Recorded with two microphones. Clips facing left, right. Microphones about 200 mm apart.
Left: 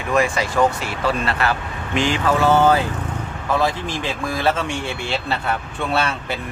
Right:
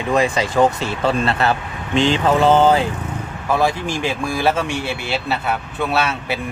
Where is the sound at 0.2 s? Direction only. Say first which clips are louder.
Right 1 dB; 20° right (ahead or behind).